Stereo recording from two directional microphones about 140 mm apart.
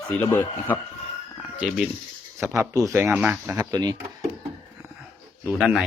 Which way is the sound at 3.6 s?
30° right (ahead or behind).